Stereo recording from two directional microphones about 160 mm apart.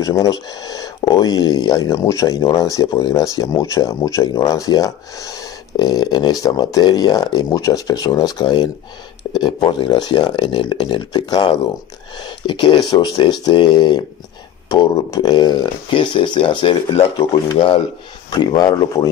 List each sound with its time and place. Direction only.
0.0 s speech: 20° left (ahead or behind)